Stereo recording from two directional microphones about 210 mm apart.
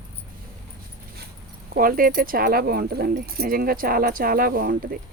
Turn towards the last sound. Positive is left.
turn(degrees=-45)  # may be behind; listen again after turning